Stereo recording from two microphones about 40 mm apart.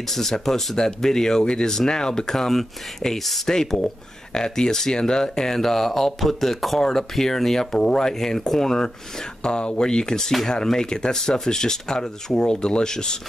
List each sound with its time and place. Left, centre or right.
0.1 s speech: centre